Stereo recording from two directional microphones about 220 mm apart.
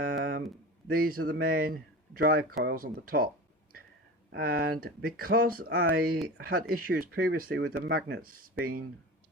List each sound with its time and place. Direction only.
0.0 s a sound: 45° right (ahead or behind)
0.9 s speech: 40° right (ahead or behind)
4.3 s speech: 45° right (ahead or behind)